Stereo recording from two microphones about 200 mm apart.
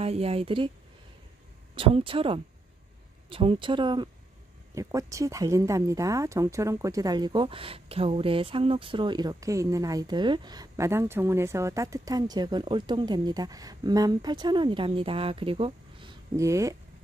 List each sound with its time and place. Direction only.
0.0 s speech: 30° right (ahead or behind)
1.8 s speech: 25° right (ahead or behind)
16.3 s speech: 15° right (ahead or behind)